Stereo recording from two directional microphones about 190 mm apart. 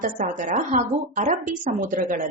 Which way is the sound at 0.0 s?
45° right (ahead or behind).